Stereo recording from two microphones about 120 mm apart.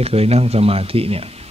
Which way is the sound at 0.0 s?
55° right (ahead or behind).